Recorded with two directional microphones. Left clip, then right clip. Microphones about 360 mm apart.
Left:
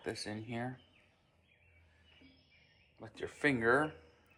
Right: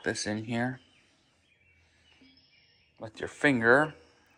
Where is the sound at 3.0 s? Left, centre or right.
Right.